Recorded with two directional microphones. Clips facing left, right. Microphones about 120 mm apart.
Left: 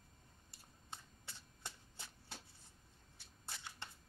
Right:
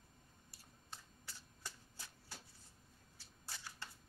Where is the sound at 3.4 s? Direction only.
25° left (ahead or behind).